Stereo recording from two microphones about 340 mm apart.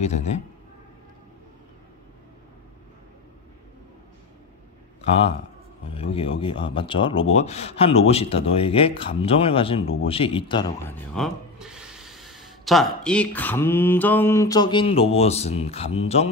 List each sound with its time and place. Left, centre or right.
0.0 s a man's voice: centre
5.9 s speech: centre
11.1 s speech: centre